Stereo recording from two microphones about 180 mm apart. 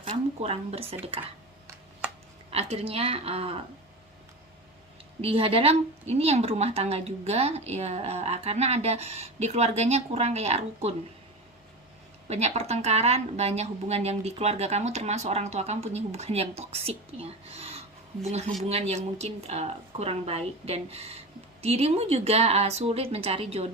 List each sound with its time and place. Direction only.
0.0 s a sound: 35° right (ahead or behind)
2.5 s a woman's voice: 35° right (ahead or behind)
5.2 s a woman's voice: 30° right (ahead or behind)
12.3 s a woman's voice: 35° right (ahead or behind)